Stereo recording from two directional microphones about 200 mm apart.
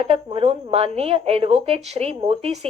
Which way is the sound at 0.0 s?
30° right (ahead or behind).